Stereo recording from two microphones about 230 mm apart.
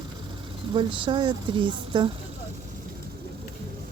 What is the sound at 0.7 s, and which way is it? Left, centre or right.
A woman's voice, right.